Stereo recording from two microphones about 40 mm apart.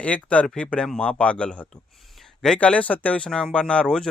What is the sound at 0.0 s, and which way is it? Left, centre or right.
Speech, left.